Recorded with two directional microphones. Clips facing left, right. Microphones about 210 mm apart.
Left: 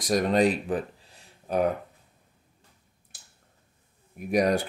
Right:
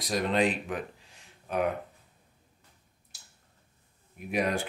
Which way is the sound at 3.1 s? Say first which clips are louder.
Left 2 dB; 50° left (ahead or behind).